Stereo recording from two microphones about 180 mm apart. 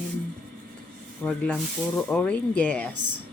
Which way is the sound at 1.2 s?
5° left (ahead or behind).